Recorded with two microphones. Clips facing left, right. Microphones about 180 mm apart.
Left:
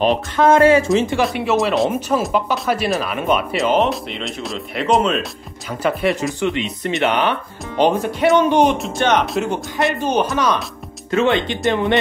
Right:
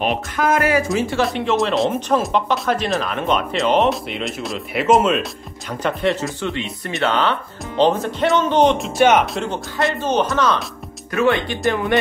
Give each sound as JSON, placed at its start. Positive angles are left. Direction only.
{"t": 0.1, "sound": "speech", "side_deg": 30}
{"t": 1.3, "sound": "speech", "side_deg": 10}
{"t": 6.2, "sound": "speech", "side_deg": 20}
{"t": 9.5, "sound": "speech", "side_deg": 15}
{"t": 11.1, "sound": "speech", "side_deg": 25}